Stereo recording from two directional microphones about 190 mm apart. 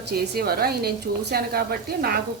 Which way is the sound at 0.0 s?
55° right (ahead or behind).